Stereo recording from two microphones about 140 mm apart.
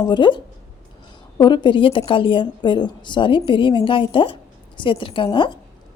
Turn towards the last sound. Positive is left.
turn(degrees=35)  # may be behind; listen again after turning